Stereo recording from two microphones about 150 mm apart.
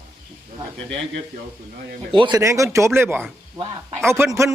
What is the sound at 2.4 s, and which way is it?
Speech, 20° right (ahead or behind).